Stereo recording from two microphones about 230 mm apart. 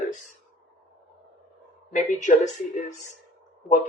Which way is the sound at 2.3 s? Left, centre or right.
Left.